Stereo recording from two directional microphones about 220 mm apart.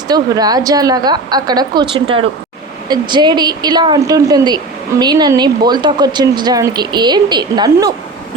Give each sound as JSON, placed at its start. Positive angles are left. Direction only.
{"t": 0.1, "sound": "a woman's voice", "side_deg": -15}